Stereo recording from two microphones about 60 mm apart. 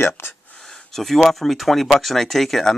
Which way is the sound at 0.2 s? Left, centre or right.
Left.